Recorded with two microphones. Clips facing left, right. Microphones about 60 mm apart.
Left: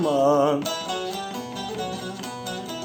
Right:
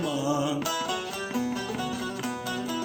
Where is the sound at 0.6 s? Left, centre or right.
Right.